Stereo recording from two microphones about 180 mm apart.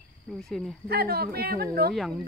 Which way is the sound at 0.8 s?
60° right (ahead or behind).